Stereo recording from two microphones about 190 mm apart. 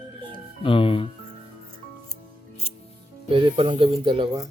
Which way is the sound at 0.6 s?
25° left (ahead or behind).